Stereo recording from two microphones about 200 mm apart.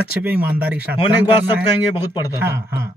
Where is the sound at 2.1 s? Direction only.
15° left (ahead or behind).